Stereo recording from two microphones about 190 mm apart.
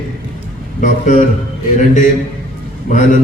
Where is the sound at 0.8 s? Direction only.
40° left (ahead or behind).